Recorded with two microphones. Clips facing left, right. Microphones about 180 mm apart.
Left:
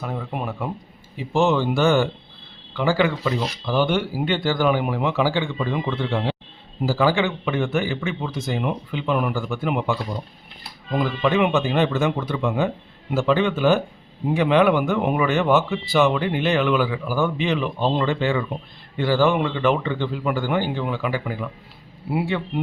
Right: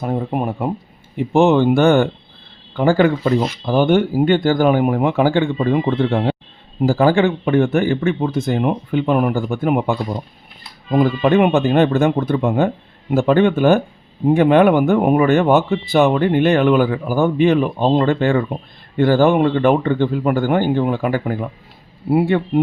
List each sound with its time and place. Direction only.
0.3 s speech: 50° right (ahead or behind)